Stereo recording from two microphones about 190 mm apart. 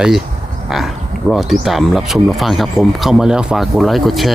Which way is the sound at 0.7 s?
Centre (ahead or behind).